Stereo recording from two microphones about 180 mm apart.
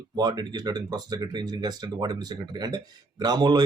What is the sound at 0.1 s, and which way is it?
Speech, 25° right (ahead or behind).